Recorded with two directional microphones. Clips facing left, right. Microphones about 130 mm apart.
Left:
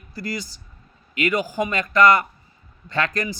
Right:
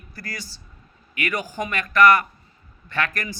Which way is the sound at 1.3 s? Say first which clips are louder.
Left 4 dB; 15° left (ahead or behind).